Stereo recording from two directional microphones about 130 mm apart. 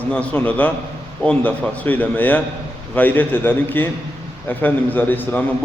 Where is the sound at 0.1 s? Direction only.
10° left (ahead or behind).